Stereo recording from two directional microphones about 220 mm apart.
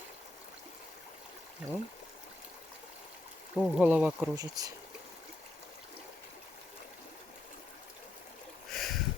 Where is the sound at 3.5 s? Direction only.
Centre (ahead or behind).